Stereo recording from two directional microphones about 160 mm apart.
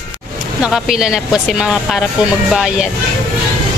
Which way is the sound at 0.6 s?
5° right (ahead or behind).